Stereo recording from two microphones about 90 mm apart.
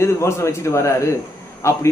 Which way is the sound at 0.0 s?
30° left (ahead or behind).